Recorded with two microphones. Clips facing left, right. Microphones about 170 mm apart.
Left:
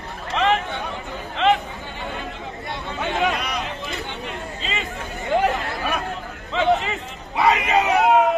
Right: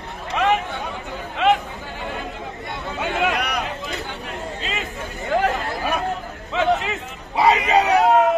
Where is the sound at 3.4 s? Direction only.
65° right (ahead or behind).